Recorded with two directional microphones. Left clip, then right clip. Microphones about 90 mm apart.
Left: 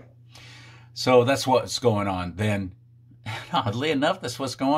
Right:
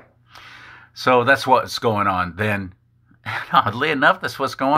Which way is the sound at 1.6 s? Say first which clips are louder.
Right 4 dB; 15° left (ahead or behind).